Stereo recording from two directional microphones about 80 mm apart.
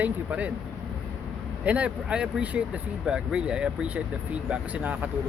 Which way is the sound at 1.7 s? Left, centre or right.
Centre.